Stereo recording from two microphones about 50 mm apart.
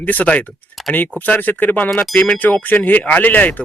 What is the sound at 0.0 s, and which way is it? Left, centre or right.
Speech, left.